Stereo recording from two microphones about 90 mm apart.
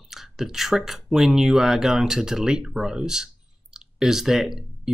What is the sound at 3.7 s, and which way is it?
Clicking, 5° right (ahead or behind).